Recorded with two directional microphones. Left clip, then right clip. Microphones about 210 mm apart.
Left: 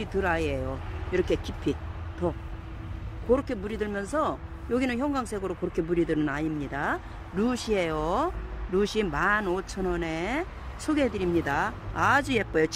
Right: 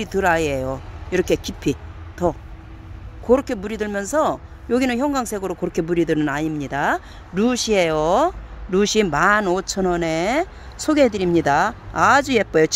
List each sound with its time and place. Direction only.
0.0 s speech: 55° right (ahead or behind)